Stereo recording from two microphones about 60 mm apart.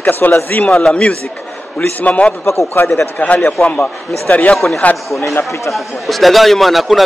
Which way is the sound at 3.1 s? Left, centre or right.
Left.